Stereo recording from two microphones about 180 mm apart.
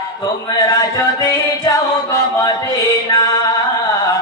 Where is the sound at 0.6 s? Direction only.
20° left (ahead or behind).